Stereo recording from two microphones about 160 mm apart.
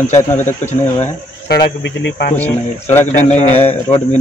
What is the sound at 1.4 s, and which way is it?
Speech, 80° left.